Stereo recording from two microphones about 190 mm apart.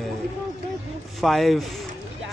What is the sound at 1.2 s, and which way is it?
Speech, centre (ahead or behind).